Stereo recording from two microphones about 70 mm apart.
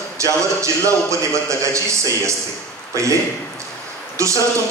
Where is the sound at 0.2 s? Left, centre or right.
Right.